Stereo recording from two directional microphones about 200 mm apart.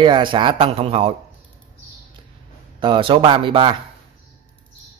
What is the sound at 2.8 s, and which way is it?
Speech, 25° right (ahead or behind).